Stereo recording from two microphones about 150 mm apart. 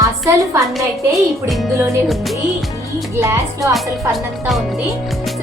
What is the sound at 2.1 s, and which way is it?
Music, centre (ahead or behind).